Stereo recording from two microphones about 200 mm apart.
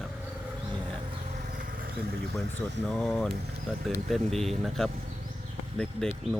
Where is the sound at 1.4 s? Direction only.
40° right (ahead or behind).